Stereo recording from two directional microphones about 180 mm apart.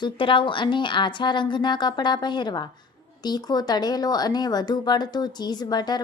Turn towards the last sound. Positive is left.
turn(degrees=25)  # may be behind; listen again after turning